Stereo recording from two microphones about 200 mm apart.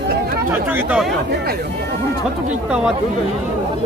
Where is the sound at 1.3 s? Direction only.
50° right (ahead or behind).